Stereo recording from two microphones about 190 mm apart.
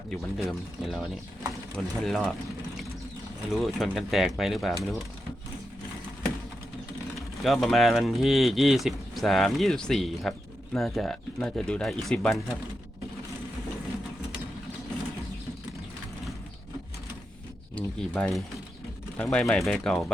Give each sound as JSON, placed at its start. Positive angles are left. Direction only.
{"t": 0.1, "sound": "speech", "side_deg": 0}
{"t": 3.5, "sound": "speech", "side_deg": 0}
{"t": 7.2, "sound": "speech", "side_deg": 0}
{"t": 17.7, "sound": "speech", "side_deg": 5}